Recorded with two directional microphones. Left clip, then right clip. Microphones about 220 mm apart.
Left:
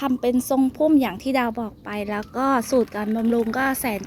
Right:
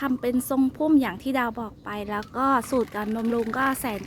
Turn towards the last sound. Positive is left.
turn(degrees=0)  # may be behind; listen again after turning